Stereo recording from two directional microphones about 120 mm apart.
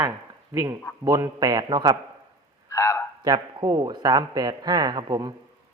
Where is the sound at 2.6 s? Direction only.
25° left (ahead or behind).